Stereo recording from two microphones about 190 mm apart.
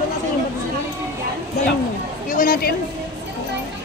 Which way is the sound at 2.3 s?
50° left (ahead or behind).